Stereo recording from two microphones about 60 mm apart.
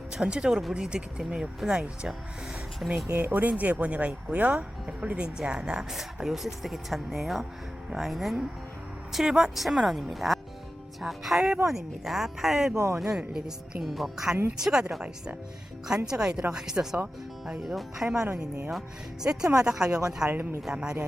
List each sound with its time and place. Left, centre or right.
0.1 s speech: centre
3.1 s speech: right; by 12.7 s centre
12.7 s speech: right
13.8 s speech: centre
14.6 s speech: centre
20.3 s speech: right
20.6 s speech: centre